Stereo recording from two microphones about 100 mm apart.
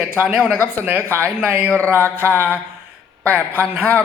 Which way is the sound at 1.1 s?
25° right (ahead or behind).